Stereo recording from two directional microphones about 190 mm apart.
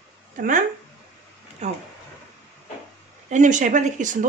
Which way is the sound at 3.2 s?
40° right (ahead or behind).